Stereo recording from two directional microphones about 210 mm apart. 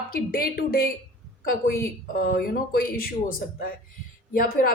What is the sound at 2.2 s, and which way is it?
Speech, 45° left (ahead or behind).